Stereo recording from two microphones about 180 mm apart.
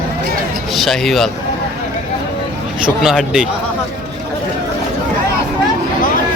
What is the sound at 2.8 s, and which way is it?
Speech, centre (ahead or behind).